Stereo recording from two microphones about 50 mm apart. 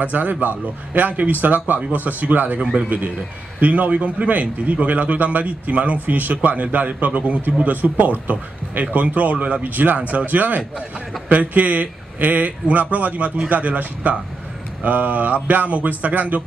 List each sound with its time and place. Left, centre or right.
0.0 s a man's voice: right